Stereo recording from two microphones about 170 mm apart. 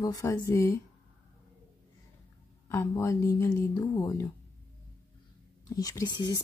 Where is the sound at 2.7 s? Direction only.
15° left (ahead or behind).